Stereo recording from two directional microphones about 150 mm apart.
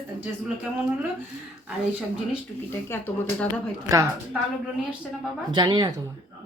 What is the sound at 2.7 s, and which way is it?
Speech, 15° left (ahead or behind).